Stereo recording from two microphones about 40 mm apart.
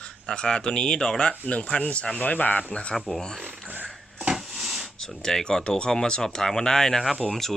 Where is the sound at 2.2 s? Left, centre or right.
Left.